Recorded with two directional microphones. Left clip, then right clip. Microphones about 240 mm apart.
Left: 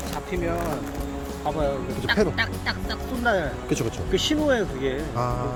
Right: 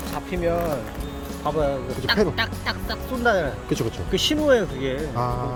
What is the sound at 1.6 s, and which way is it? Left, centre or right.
Speech, right.